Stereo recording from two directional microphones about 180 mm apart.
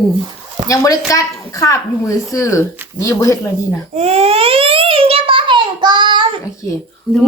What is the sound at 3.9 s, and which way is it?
Babbling, 35° right (ahead or behind).